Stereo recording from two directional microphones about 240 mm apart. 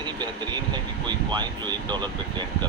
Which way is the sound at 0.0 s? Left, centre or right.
Centre.